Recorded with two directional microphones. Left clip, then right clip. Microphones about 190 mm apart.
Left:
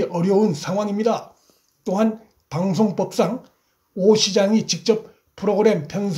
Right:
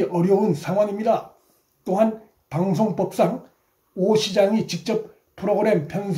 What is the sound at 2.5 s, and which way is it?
Speech, 35° left (ahead or behind).